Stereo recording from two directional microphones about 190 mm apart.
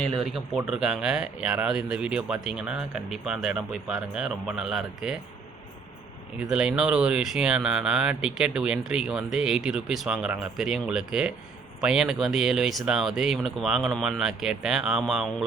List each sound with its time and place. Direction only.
0.0 s speech: centre (ahead or behind)
6.5 s speech: 5° right (ahead or behind)